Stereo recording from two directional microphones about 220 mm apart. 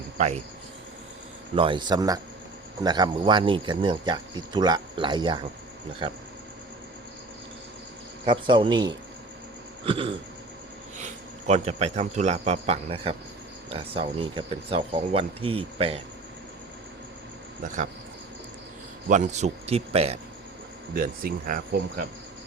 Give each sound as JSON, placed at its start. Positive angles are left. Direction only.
{"t": 0.2, "sound": "speech", "side_deg": -30}
{"t": 1.5, "sound": "speech", "side_deg": -20}
{"t": 8.2, "sound": "speech", "side_deg": -20}
{"t": 19.0, "sound": "speech", "side_deg": -35}
{"t": 20.9, "sound": "speech", "side_deg": -40}